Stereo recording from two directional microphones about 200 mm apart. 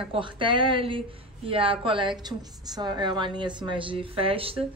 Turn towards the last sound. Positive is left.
turn(degrees=-25)  # may be behind; listen again after turning